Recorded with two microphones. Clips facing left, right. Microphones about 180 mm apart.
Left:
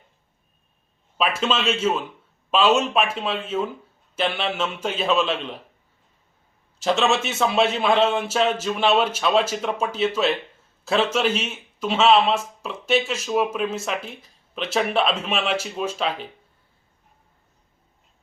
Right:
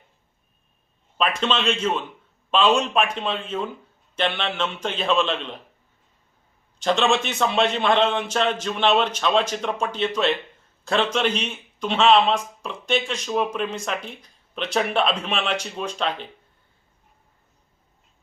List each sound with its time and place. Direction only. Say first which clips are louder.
1.2 s a man's voice: even; 5° left (ahead or behind)
6.7 s a man's voice: even; 5° left (ahead or behind)